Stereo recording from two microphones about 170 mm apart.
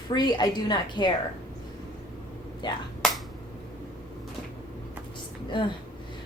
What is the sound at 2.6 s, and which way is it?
Speech, 25° left (ahead or behind).